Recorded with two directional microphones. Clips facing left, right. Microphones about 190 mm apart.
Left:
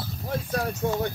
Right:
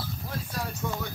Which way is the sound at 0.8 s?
55° left (ahead or behind).